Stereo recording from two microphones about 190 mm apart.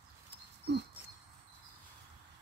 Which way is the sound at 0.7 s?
60° right (ahead or behind).